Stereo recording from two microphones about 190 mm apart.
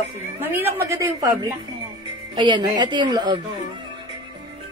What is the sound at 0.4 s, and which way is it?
A woman's voice, 10° right (ahead or behind).